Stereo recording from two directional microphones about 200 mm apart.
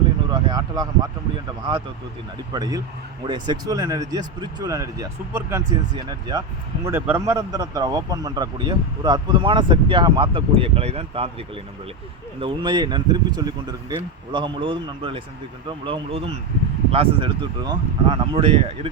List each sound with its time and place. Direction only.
0.3 s a sound: 20° right (ahead or behind)
2.5 s speech: 20° right (ahead or behind)
12.4 s speech: 25° right (ahead or behind)